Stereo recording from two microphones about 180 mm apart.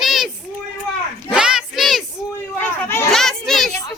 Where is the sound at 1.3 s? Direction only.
5° right (ahead or behind).